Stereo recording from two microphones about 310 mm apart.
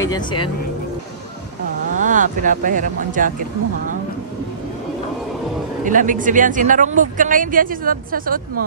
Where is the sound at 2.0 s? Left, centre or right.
Right.